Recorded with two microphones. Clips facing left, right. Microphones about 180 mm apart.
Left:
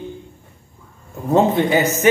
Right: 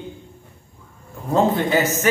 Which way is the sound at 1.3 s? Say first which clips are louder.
Left 3 dB; 20° left (ahead or behind).